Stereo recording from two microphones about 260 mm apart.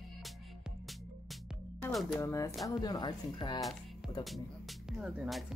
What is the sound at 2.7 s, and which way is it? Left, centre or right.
Speech, centre.